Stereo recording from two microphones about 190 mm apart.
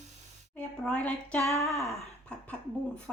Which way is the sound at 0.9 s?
5° left (ahead or behind).